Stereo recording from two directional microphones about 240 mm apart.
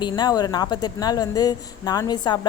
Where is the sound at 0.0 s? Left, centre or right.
Centre.